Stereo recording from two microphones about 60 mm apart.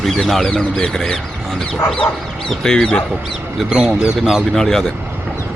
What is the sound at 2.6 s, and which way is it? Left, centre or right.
Speech, centre.